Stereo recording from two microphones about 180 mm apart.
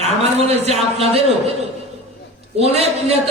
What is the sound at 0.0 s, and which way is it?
A man's voice, 35° right (ahead or behind).